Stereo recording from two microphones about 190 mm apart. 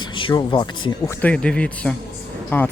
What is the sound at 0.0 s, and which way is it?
A man's voice, 25° left (ahead or behind).